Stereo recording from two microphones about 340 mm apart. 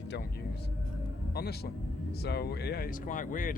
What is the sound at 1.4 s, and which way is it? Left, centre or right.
Speech, left.